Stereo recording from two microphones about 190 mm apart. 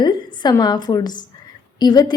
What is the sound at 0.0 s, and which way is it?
A woman's voice, 20° left (ahead or behind).